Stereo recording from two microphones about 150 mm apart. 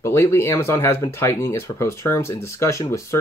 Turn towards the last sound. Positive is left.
turn(degrees=20)  # may be behind; listen again after turning